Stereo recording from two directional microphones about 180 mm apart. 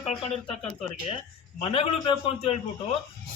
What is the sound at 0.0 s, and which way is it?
A man's voice, 35° left (ahead or behind).